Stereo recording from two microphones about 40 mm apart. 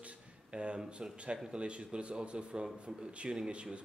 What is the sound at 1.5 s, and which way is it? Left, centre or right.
A man's voice, right.